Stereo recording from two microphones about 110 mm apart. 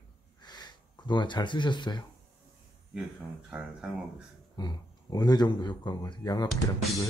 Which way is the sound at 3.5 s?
10° right (ahead or behind).